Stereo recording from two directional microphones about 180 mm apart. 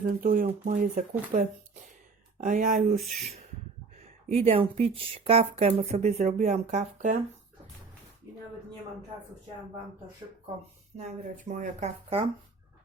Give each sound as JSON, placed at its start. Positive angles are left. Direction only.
{"t": 0.0, "sound": "speech", "side_deg": -50}
{"t": 3.9, "sound": "speech", "side_deg": -35}
{"t": 10.9, "sound": "speech", "side_deg": -40}